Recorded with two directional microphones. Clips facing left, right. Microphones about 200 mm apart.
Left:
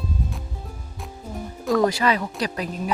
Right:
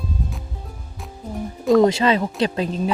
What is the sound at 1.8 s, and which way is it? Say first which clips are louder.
Speech: right 3 dB; 25° right (ahead or behind).